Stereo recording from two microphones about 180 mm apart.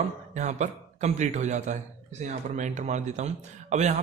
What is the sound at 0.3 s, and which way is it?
A man's voice, 40° right (ahead or behind).